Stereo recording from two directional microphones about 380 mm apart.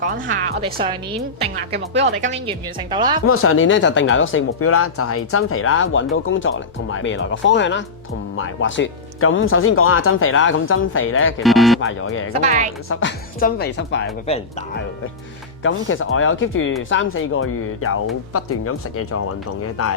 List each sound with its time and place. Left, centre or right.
0.0 s a woman's voice: right
1.9 s speech: right
2.5 s a woman's voice: centre
3.2 s speech: left
11.4 s speech: centre
11.8 s speech: left
12.4 s speech: centre
12.9 s speech: left
15.6 s speech: left